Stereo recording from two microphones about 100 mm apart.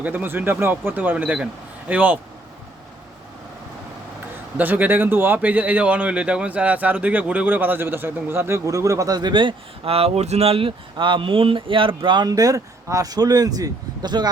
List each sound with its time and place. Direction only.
0.0 s speech: 20° right (ahead or behind)
4.5 s a man's voice: 20° right (ahead or behind); by 12.2 s 55° right (ahead or behind)
12.2 s speech: 35° right (ahead or behind)